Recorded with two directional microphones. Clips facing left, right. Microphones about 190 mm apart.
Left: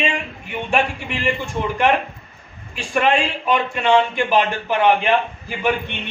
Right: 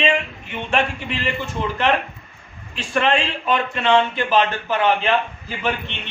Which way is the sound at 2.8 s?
10° left (ahead or behind).